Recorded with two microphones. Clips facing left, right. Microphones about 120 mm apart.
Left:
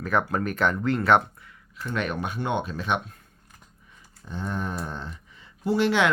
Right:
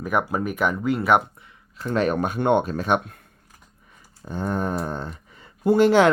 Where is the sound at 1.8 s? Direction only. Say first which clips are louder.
Right 7 dB; 40° right (ahead or behind).